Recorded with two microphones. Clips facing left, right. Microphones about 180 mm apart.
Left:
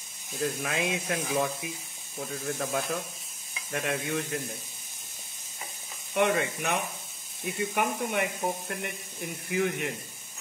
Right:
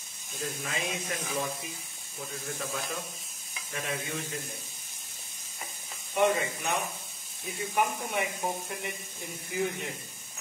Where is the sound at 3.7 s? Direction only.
60° left (ahead or behind).